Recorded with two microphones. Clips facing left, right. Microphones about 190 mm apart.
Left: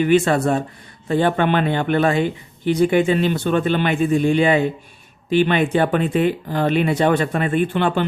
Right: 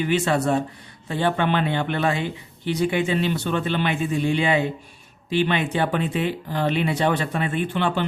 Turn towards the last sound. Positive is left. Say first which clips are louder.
# left 5 dB
turn(degrees=50)  # may be behind; listen again after turning